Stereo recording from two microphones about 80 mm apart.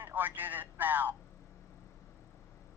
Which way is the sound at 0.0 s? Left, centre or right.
Right.